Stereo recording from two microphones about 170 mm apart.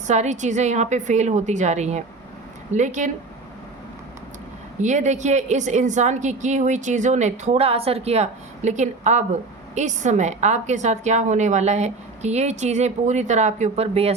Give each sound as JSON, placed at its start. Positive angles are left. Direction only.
{"t": 0.1, "sound": "a woman's voice", "side_deg": -45}
{"t": 4.8, "sound": "a woman's voice", "side_deg": -45}